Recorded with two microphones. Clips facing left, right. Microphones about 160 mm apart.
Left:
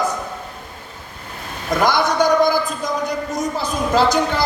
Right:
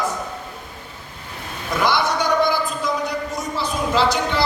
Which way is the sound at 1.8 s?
45° left (ahead or behind).